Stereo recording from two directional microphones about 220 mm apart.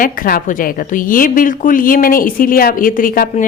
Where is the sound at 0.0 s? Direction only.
40° left (ahead or behind).